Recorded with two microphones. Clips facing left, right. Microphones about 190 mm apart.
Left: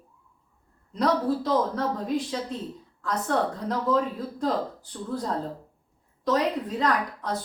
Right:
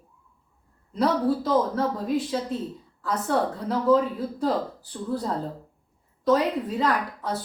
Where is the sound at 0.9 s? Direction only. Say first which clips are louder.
Right 1 dB; 5° right (ahead or behind).